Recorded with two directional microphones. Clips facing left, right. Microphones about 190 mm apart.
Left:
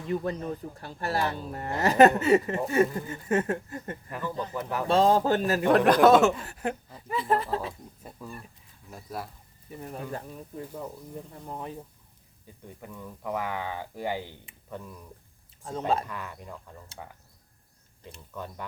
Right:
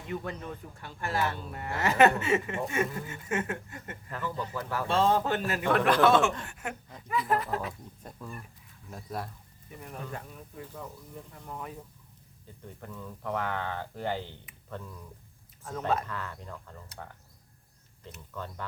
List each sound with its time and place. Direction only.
0.1 s speech: 35° left (ahead or behind)
4.1 s speech: 15° left (ahead or behind)
4.9 s speech: 35° left (ahead or behind)
8.1 s speech: 5° left (ahead or behind)
9.7 s speech: 35° left (ahead or behind)
12.6 s speech: 10° left (ahead or behind)
16.0 s speech: 15° left (ahead or behind)
18.3 s speech: 15° left (ahead or behind)